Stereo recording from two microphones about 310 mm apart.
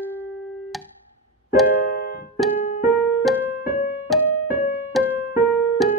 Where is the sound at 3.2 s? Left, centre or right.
Centre.